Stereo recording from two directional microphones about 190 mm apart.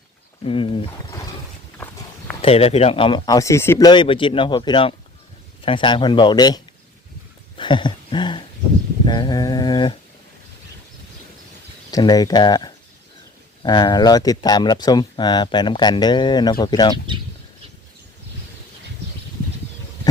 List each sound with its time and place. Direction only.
0.4 s speech: 25° left (ahead or behind)
2.4 s speech: 30° left (ahead or behind)
7.5 s a sound: 25° left (ahead or behind)
11.9 s speech: 20° left (ahead or behind)